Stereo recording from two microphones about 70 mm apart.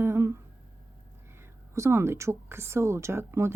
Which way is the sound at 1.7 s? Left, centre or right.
Right.